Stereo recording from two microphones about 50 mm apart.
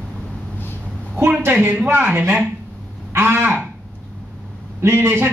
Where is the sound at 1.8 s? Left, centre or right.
Right.